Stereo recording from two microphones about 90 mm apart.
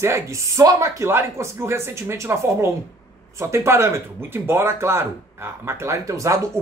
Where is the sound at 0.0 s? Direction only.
35° right (ahead or behind).